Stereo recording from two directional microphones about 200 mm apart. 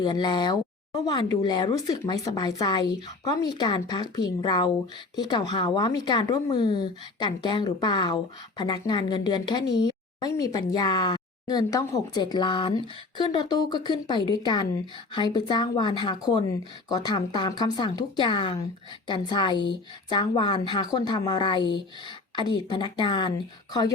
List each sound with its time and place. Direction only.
0.0 s speech: 20° left (ahead or behind)
9.7 s a sound: 20° left (ahead or behind)
10.4 s speech: 20° left (ahead or behind)